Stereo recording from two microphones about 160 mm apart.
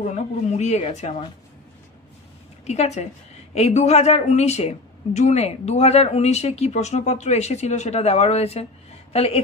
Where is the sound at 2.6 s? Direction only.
45° left (ahead or behind).